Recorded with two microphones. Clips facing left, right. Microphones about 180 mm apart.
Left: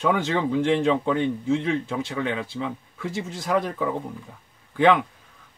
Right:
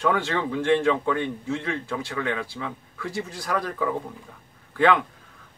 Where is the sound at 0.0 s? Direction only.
20° left (ahead or behind).